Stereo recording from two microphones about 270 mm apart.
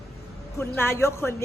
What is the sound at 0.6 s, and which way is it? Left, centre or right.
Speech, centre.